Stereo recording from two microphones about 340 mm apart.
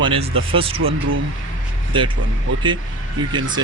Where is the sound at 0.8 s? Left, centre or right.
Right.